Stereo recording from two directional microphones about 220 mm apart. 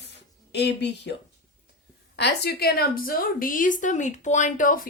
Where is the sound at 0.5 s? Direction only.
50° left (ahead or behind).